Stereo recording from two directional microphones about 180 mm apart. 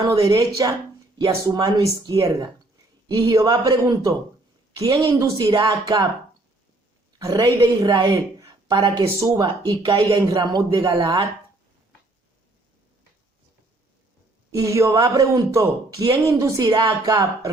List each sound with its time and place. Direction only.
0.0 s a woman's voice: 20° right (ahead or behind)
7.2 s a woman's voice: 20° right (ahead or behind)
14.5 s a woman's voice: 15° right (ahead or behind)